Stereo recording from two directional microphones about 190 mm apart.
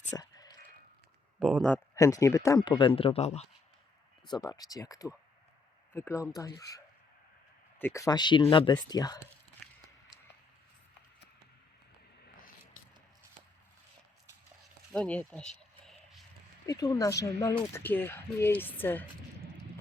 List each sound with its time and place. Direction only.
0.2 s a sound: 20° left (ahead or behind)
1.4 s speech: 5° left (ahead or behind)
2.0 s speech: 15° left (ahead or behind); by 3.4 s 35° left (ahead or behind)
4.3 s speech: 20° left (ahead or behind)
14.9 s a sound: 5° left (ahead or behind)
16.6 s speech: 20° left (ahead or behind)